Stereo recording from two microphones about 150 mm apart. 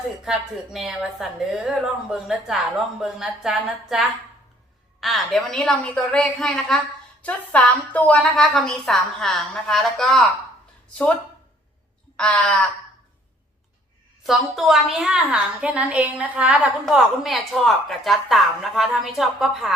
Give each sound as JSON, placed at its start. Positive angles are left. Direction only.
{"t": 0.3, "sound": "a woman's voice", "side_deg": -5}
{"t": 12.1, "sound": "crow", "side_deg": 5}
{"t": 14.3, "sound": "a woman's voice", "side_deg": 0}